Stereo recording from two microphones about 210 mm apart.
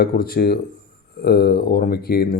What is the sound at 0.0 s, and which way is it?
Speech, 45° left (ahead or behind).